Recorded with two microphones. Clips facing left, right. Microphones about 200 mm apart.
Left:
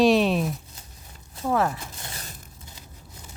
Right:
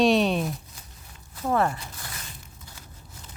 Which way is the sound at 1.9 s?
25° left (ahead or behind).